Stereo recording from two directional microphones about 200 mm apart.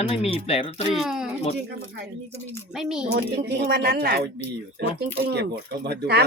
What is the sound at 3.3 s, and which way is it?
Speech, 55° right (ahead or behind).